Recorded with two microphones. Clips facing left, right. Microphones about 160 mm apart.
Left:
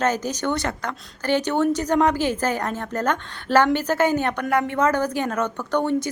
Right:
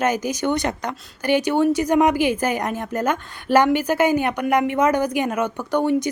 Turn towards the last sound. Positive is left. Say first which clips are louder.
# right 2 dB
turn(degrees=-10)  # may be behind; listen again after turning